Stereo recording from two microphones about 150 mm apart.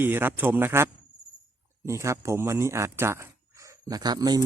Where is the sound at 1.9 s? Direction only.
20° right (ahead or behind).